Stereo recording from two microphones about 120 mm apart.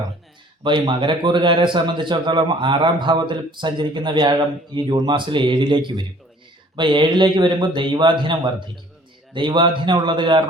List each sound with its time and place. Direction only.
0.6 s speech: 40° right (ahead or behind)